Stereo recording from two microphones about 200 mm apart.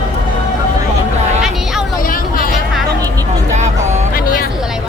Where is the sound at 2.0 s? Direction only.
45° left (ahead or behind).